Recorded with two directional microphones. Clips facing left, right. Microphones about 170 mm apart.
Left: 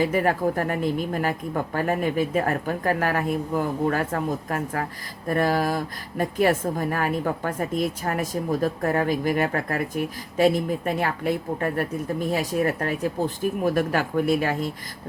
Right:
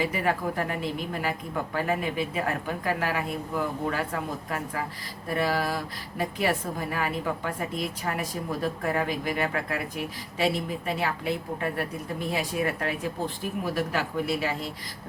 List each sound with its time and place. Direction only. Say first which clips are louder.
0.0 s speech: left 5 dB; 45° left (ahead or behind)